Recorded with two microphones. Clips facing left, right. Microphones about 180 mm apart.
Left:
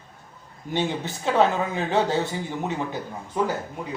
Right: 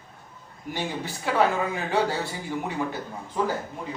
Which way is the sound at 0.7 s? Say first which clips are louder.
Left 5 dB; 20° left (ahead or behind).